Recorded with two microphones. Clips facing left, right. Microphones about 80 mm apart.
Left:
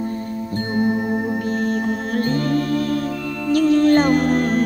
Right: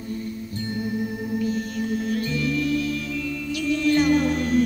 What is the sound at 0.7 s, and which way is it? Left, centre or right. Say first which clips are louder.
Music: left 9 dB; left.